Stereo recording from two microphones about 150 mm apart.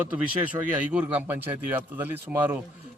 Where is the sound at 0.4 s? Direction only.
10° right (ahead or behind).